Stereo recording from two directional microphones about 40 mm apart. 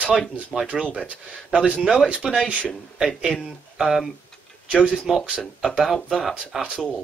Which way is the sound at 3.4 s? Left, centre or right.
Centre.